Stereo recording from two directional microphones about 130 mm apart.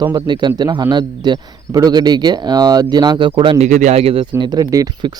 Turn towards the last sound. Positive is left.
turn(degrees=-30)  # may be behind; listen again after turning